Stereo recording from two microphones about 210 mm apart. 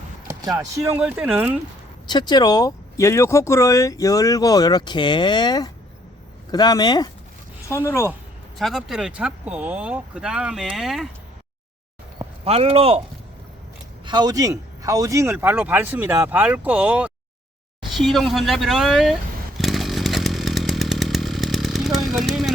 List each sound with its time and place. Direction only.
0.3 s speech: 15° right (ahead or behind)
2.0 s speech: 20° left (ahead or behind)
8.5 s speech: centre (ahead or behind)
12.2 s speech: 25° right (ahead or behind)
14.0 s speech: 20° right (ahead or behind); by 17.1 s 5° right (ahead or behind)
17.9 s vehicle: centre (ahead or behind)